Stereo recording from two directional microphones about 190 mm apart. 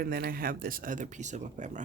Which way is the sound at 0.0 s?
50° right (ahead or behind).